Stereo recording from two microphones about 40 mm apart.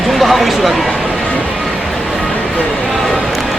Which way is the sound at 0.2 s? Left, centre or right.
Centre.